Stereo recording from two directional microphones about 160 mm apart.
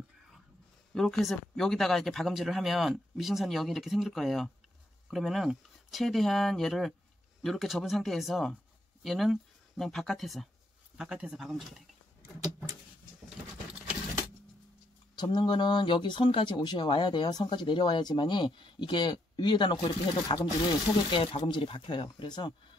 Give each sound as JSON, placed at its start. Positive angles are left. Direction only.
{"t": 0.9, "sound": "speech", "side_deg": 0}
{"t": 15.1, "sound": "speech", "side_deg": 25}